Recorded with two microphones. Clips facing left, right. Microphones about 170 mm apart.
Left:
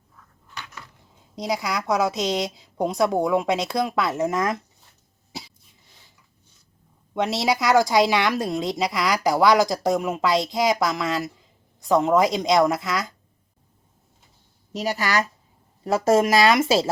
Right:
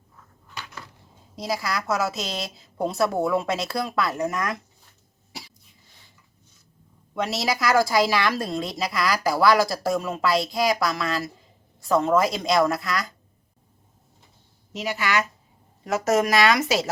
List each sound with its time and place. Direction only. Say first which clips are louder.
1.4 s a woman's voice: left 2 dB; 20° left (ahead or behind)
7.1 s a woman's voice: left 3 dB; 20° left (ahead or behind)
14.7 s a woman's voice: left 2 dB; 40° left (ahead or behind)